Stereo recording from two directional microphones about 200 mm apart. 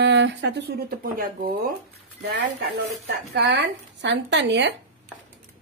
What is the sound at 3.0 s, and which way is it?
A woman's voice, 60° right (ahead or behind).